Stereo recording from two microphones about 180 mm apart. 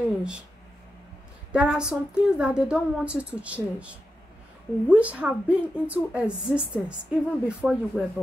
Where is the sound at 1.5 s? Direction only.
5° right (ahead or behind).